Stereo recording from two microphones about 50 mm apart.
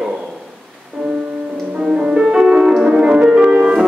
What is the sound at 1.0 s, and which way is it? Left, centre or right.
Music, centre.